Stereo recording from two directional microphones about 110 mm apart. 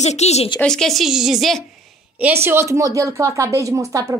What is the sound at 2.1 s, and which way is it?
Speech, 20° right (ahead or behind).